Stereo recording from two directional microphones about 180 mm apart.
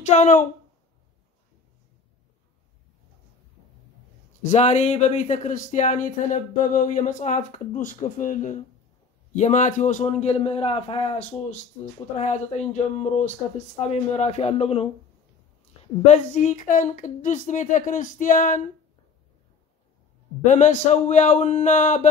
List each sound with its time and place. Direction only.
0.0 s a woman's voice: 40° left (ahead or behind)
4.4 s speech: 40° left (ahead or behind)
16.1 s speech: 40° left (ahead or behind)
20.4 s speech: 40° left (ahead or behind)